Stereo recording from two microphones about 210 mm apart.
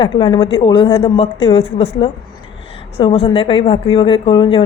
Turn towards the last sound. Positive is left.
turn(degrees=25)  # may be behind; listen again after turning